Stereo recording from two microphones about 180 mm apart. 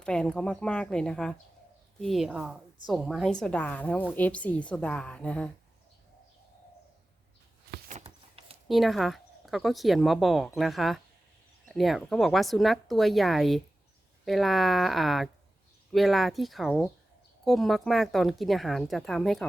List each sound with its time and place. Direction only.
0.0 s a woman's voice: 5° left (ahead or behind)
7.9 s a sound: 35° right (ahead or behind)
8.6 s speech: centre (ahead or behind)